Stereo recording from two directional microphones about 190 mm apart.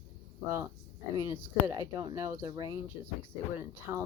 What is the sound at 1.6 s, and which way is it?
Speech, 15° right (ahead or behind).